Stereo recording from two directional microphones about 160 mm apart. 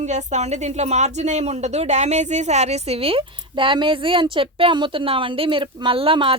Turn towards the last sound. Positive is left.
turn(degrees=-35)  # may be behind; listen again after turning